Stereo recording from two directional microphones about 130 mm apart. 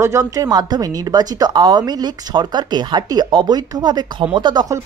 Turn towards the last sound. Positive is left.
turn(degrees=-35)  # may be behind; listen again after turning